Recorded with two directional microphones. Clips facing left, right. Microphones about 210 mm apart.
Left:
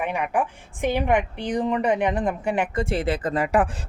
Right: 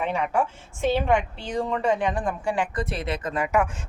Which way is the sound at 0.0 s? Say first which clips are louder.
Even; 15° left (ahead or behind).